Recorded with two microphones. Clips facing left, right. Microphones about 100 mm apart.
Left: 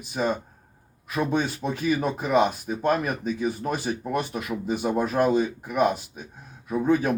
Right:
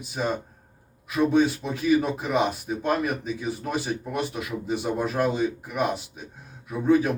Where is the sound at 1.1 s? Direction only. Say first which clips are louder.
Right 4 dB; 40° left (ahead or behind).